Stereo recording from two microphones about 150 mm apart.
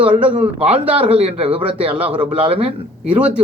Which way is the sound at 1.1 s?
40° right (ahead or behind).